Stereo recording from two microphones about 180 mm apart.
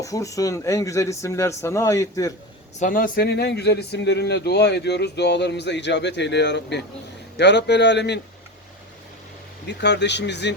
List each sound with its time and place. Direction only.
0.0 s speech: 20° left (ahead or behind)
2.7 s speech: 45° left (ahead or behind); by 8.2 s 70° left (ahead or behind)
9.6 s speech: 70° left (ahead or behind)